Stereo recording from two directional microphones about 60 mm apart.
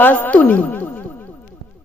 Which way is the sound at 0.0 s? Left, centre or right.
Left.